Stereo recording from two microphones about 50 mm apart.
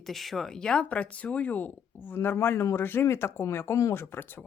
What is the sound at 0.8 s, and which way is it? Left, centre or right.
Speech, left.